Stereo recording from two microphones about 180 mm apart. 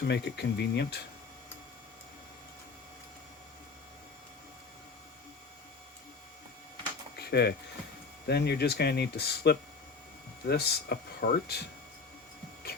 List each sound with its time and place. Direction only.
0.0 s speech: 70° left (ahead or behind)
7.2 s music: 65° left (ahead or behind)
8.3 s speech: 65° left (ahead or behind)